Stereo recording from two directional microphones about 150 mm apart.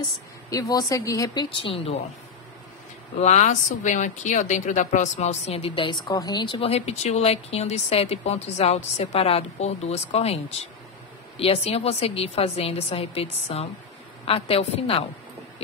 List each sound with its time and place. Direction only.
0.5 s a woman's voice: 25° left (ahead or behind)
3.2 s a woman's voice: 50° left (ahead or behind)